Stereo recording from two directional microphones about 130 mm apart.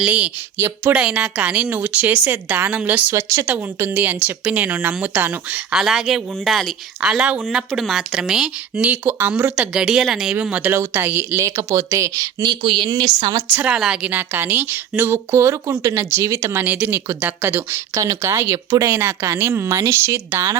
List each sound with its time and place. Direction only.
0.0 s a woman's voice: 10° right (ahead or behind); by 13.4 s 35° right (ahead or behind)
13.6 s a woman's voice: 5° right (ahead or behind); by 18.9 s 30° right (ahead or behind)
18.9 s a woman's voice: 15° right (ahead or behind)